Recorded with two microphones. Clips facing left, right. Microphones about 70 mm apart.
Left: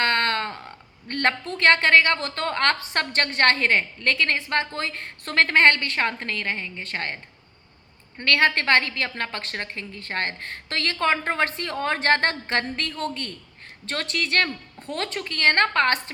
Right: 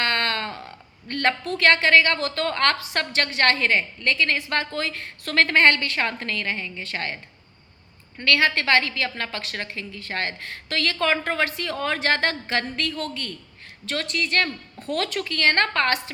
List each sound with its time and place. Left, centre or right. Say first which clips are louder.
0.0 s a woman's voice: left 2 dB; left
8.2 s a woman's voice: even; left
14.8 s a woman's voice: right 4 dB; left